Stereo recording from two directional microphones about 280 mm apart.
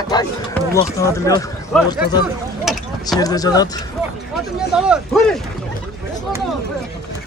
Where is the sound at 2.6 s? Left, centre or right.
Centre.